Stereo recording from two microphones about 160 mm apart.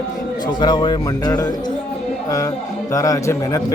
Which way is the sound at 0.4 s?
25° left (ahead or behind).